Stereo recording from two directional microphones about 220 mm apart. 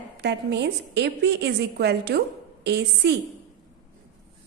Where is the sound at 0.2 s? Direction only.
50° right (ahead or behind).